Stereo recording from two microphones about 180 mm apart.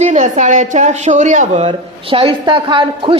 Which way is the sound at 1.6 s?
30° right (ahead or behind).